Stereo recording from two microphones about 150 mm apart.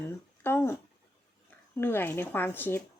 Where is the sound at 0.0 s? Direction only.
15° left (ahead or behind).